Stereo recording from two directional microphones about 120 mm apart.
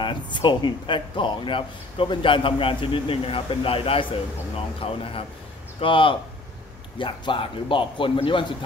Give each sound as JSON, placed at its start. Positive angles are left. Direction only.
{"t": 0.0, "sound": "speech", "side_deg": 40}